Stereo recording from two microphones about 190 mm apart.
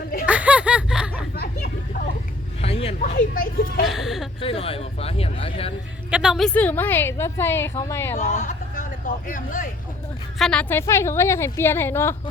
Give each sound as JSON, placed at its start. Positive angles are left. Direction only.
{"t": 0.3, "sound": "a sound", "side_deg": -5}
{"t": 1.4, "sound": "a sound", "side_deg": 55}
{"t": 2.6, "sound": "a sound", "side_deg": 30}
{"t": 3.0, "sound": "speech", "side_deg": 50}
{"t": 3.8, "sound": "speech", "side_deg": 0}
{"t": 4.4, "sound": "speech", "side_deg": 30}
{"t": 6.1, "sound": "a woman's voice", "side_deg": -5}
{"t": 8.1, "sound": "speech", "side_deg": 40}
{"t": 10.3, "sound": "a woman's voice", "side_deg": 5}